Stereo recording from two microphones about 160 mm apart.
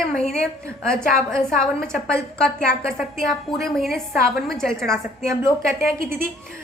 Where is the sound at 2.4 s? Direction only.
5° left (ahead or behind).